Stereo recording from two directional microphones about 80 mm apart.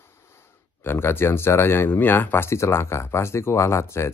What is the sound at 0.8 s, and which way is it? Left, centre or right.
Speech, left.